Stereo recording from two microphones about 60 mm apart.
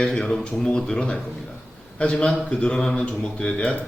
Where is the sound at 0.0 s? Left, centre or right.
Centre.